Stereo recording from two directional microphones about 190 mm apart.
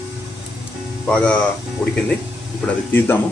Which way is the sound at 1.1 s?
5° left (ahead or behind).